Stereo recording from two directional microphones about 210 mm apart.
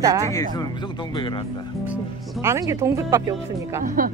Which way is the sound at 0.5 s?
20° left (ahead or behind).